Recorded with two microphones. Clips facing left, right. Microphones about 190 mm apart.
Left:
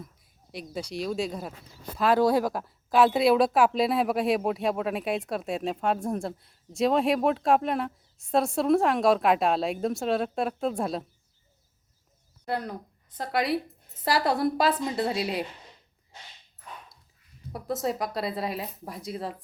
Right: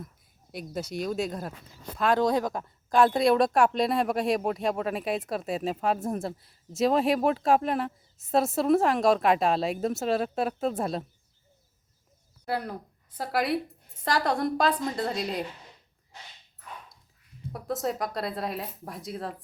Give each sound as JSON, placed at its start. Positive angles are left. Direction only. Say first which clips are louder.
{"t": 0.5, "sound": "speech", "louder": "right 1 dB", "side_deg": 0}
{"t": 12.5, "sound": "speech", "louder": "even", "side_deg": -10}
{"t": 17.5, "sound": "speech", "louder": "left 1 dB", "side_deg": 0}